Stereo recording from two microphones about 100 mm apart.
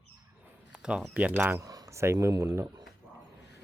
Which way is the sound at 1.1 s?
15° right (ahead or behind).